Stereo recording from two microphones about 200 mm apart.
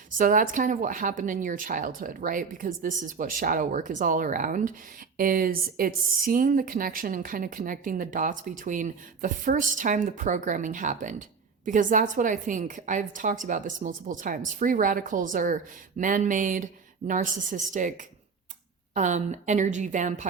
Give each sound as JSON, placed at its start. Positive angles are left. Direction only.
{"t": 0.2, "sound": "speech", "side_deg": -40}